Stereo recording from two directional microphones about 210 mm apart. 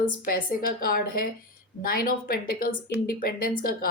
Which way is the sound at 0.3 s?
40° left (ahead or behind).